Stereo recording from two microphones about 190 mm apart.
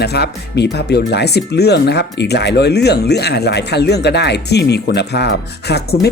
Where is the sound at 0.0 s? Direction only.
60° left (ahead or behind).